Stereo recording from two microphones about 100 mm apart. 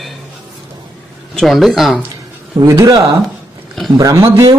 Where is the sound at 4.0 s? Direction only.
35° right (ahead or behind).